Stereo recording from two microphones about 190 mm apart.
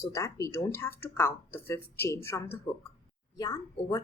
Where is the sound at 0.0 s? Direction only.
15° left (ahead or behind).